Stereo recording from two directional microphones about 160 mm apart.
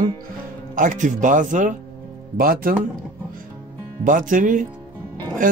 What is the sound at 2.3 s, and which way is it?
Speech, 65° right (ahead or behind).